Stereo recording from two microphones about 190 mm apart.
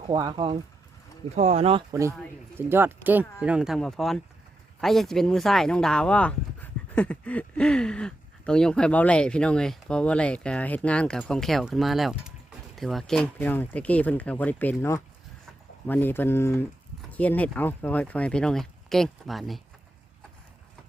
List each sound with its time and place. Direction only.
0.0 s speech: 25° right (ahead or behind)
1.9 s speech: 15° right (ahead or behind); by 19.6 s centre (ahead or behind)